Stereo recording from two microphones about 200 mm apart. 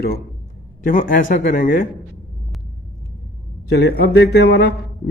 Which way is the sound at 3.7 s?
55° left (ahead or behind).